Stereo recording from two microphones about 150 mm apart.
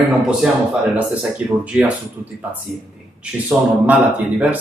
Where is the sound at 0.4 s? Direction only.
5° right (ahead or behind).